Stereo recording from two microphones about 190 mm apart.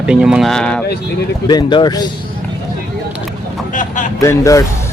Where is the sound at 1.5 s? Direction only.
20° left (ahead or behind).